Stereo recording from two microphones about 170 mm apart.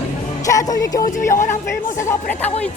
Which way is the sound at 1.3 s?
45° left (ahead or behind).